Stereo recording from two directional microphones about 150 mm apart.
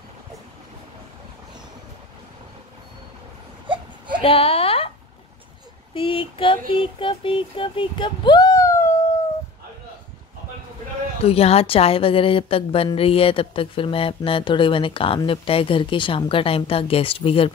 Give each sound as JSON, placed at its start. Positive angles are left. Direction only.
{"t": 3.6, "sound": "baby cry", "side_deg": -35}
{"t": 4.2, "sound": "a sound", "side_deg": 40}
{"t": 5.9, "sound": "a woman's voice", "side_deg": 35}
{"t": 11.2, "sound": "a woman's voice", "side_deg": 40}